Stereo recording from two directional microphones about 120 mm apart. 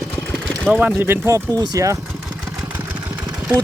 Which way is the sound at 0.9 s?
20° right (ahead or behind).